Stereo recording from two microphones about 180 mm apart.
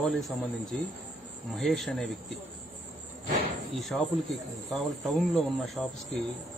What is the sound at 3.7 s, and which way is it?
Speech, centre (ahead or behind).